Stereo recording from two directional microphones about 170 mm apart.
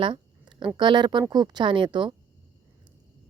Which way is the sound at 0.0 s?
30° right (ahead or behind).